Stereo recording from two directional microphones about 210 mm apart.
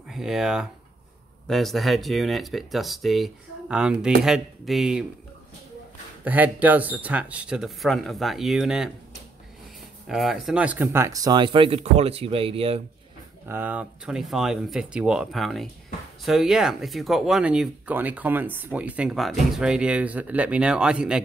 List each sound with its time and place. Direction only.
0.1 s speech: centre (ahead or behind)
6.2 s speech: 10° right (ahead or behind)
10.0 s speech: centre (ahead or behind); by 12.8 s 25° right (ahead or behind)
13.5 s speech: 10° right (ahead or behind)